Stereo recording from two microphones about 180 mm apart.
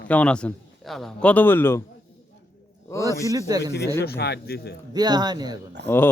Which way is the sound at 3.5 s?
20° right (ahead or behind).